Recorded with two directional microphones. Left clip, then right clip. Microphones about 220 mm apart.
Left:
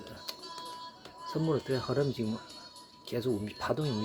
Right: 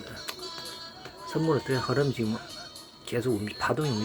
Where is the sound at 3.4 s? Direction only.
15° left (ahead or behind).